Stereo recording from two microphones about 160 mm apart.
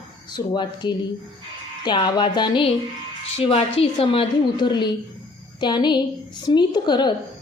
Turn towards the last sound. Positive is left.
turn(degrees=30)  # may be behind; listen again after turning